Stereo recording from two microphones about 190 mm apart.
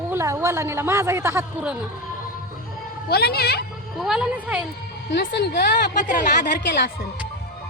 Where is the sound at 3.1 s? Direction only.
55° left (ahead or behind).